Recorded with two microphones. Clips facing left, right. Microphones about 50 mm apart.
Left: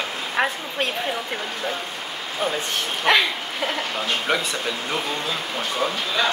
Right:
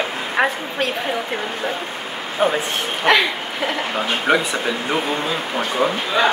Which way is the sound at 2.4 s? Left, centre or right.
Right.